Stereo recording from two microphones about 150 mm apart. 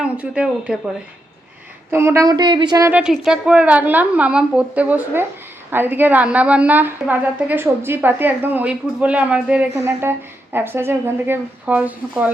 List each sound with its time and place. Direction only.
0.0 s a woman's voice: 5° right (ahead or behind)
1.9 s a woman's voice: 15° right (ahead or behind)
2.9 s a woman's voice: 5° right (ahead or behind)